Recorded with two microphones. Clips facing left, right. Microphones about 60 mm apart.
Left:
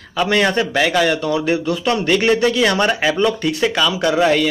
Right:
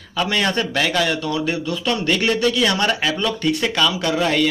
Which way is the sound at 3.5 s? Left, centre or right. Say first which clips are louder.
Left 2 dB; centre.